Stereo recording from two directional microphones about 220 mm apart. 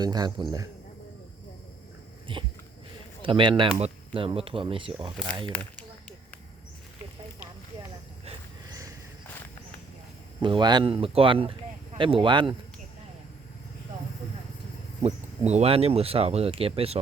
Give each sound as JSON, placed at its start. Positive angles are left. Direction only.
{"t": 0.0, "sound": "speech", "side_deg": -20}
{"t": 2.3, "sound": "speech", "side_deg": -20}
{"t": 10.4, "sound": "speech", "side_deg": -20}
{"t": 15.0, "sound": "speech", "side_deg": -30}